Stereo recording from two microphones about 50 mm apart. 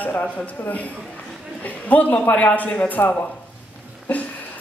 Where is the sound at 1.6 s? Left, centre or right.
Left.